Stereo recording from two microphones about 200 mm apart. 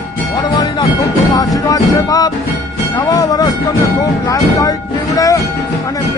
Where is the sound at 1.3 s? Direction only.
20° left (ahead or behind).